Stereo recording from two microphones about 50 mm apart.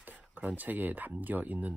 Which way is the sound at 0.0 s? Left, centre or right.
Right.